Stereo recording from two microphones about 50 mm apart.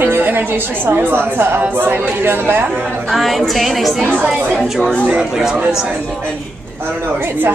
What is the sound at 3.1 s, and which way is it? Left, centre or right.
Speech, centre.